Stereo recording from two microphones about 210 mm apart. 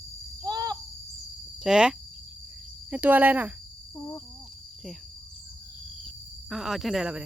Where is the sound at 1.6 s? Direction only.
5° right (ahead or behind).